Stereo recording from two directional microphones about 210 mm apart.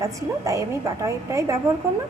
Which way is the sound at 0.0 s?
15° right (ahead or behind).